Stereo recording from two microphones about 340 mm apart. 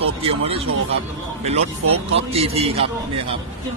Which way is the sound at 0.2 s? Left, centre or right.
Centre.